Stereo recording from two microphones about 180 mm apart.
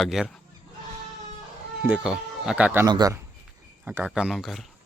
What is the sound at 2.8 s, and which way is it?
Speech, 20° right (ahead or behind).